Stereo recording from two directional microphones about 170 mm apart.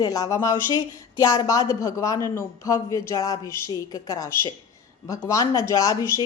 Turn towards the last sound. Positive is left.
turn(degrees=20)  # may be behind; listen again after turning